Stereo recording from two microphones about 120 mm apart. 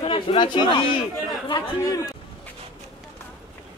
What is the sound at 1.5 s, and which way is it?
Speech, 30° left (ahead or behind).